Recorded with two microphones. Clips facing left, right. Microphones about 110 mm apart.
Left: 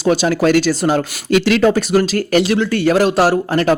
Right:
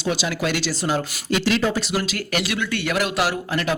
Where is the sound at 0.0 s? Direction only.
45° left (ahead or behind).